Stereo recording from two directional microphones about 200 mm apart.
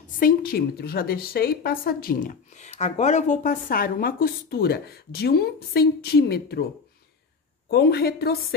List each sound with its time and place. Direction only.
0.2 s a woman's voice: 50° left (ahead or behind)